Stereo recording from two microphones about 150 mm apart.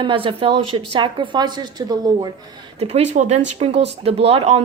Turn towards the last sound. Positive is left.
turn(degrees=-40)  # may be behind; listen again after turning